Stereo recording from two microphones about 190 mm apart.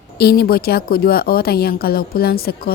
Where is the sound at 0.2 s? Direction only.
55° left (ahead or behind).